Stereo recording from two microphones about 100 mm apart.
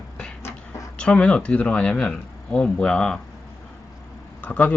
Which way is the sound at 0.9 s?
10° left (ahead or behind).